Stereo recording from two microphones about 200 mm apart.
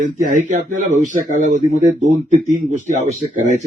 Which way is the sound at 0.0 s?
40° right (ahead or behind).